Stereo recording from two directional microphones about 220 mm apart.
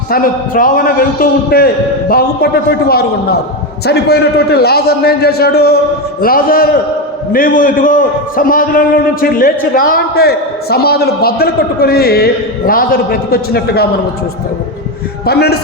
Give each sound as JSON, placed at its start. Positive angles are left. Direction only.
{"t": 0.1, "sound": "a man's voice", "side_deg": 40}
{"t": 15.3, "sound": "a man's voice", "side_deg": 45}